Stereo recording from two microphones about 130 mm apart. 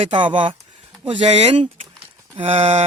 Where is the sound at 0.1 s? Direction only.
40° right (ahead or behind).